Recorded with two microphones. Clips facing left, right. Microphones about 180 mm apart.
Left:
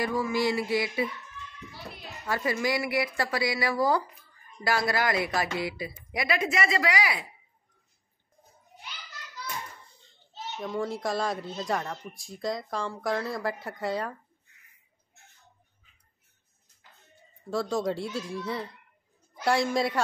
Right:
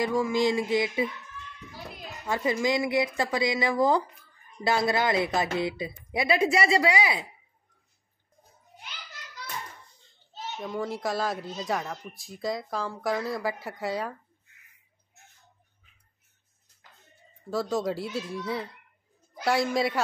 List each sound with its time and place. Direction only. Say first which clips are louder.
0.0 s speech: right 2 dB; 15° right (ahead or behind)
2.2 s speech: right 2 dB; 20° right (ahead or behind)
10.6 s speech: even; centre (ahead or behind)
17.5 s speech: even; centre (ahead or behind)